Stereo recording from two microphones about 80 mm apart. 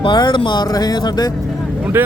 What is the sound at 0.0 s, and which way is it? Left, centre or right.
Speech, left.